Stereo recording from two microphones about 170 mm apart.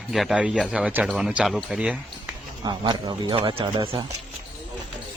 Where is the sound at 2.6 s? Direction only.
25° right (ahead or behind).